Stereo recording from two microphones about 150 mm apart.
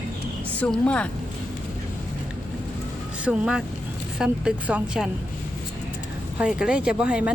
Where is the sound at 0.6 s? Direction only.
10° left (ahead or behind).